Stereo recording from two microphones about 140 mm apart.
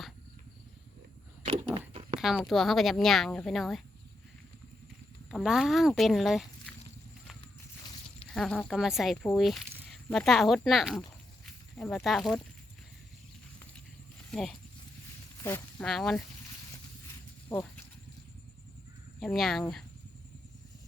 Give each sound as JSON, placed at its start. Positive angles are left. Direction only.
{"t": 1.9, "sound": "a sound", "side_deg": -40}
{"t": 2.1, "sound": "a sound", "side_deg": 0}
{"t": 2.4, "sound": "speech", "side_deg": 0}
{"t": 5.3, "sound": "speech", "side_deg": 0}
{"t": 8.3, "sound": "speech", "side_deg": 5}
{"t": 11.4, "sound": "a sound", "side_deg": 5}
{"t": 12.0, "sound": "speech", "side_deg": 0}
{"t": 14.3, "sound": "speech", "side_deg": 5}
{"t": 15.8, "sound": "speech", "side_deg": 5}
{"t": 17.5, "sound": "speech", "side_deg": 20}
{"t": 19.2, "sound": "speech", "side_deg": 0}